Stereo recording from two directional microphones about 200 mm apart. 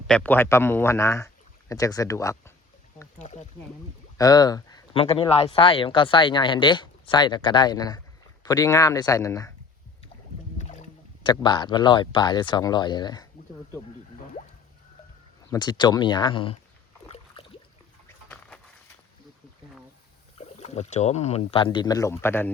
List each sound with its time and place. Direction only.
0.1 s speech: 10° left (ahead or behind)
3.2 s speech: 35° left (ahead or behind)
4.2 s speech: 20° left (ahead or behind)
10.6 s boat: 35° left (ahead or behind)
11.3 s speech: 20° left (ahead or behind)
15.4 s speech: 20° left (ahead or behind)
17.1 s a sound: 25° left (ahead or behind)
20.4 s speech: 35° left (ahead or behind); by 22.5 s 10° left (ahead or behind)